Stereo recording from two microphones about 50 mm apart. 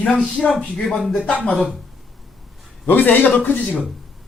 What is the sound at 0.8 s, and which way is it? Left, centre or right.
Speech, centre.